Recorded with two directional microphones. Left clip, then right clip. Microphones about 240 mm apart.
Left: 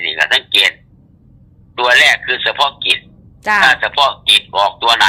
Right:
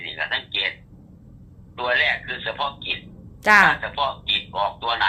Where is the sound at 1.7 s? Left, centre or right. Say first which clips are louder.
Left 11 dB; left.